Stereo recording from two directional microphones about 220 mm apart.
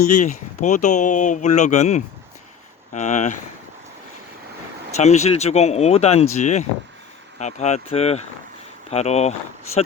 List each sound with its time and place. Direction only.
0.2 s speech: 35° left (ahead or behind)
4.9 s speech: 30° left (ahead or behind)